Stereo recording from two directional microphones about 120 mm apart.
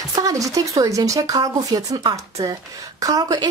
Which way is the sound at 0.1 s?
30° right (ahead or behind).